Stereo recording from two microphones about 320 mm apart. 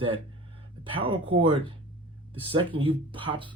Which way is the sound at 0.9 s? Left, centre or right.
Centre.